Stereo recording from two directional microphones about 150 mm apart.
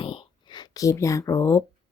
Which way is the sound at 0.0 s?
35° left (ahead or behind).